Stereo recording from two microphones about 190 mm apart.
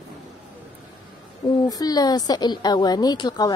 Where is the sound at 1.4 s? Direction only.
20° left (ahead or behind).